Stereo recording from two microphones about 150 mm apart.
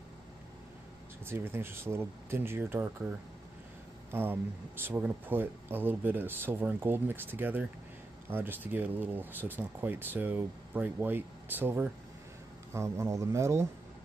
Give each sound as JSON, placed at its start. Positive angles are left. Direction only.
{"t": 1.2, "sound": "speech", "side_deg": -15}